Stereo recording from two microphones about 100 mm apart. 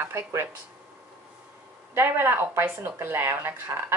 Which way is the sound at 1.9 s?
25° right (ahead or behind).